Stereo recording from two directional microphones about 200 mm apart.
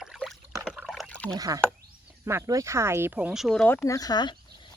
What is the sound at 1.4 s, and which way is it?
Speech, 20° right (ahead or behind).